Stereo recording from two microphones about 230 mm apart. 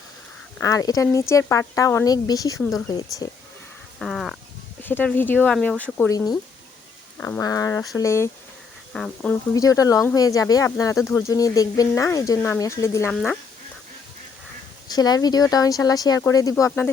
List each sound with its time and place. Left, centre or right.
0.6 s speech: centre
2.9 s speech: centre
4.0 s speech: centre
14.8 s speech: centre